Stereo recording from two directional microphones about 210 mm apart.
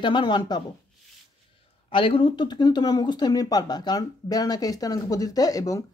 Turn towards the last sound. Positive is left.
turn(degrees=15)  # may be behind; listen again after turning